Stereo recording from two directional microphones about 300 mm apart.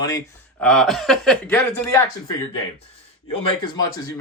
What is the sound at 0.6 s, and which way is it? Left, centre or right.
Speech, centre.